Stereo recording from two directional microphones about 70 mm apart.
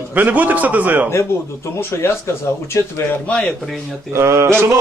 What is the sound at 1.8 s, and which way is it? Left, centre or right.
Speech, left.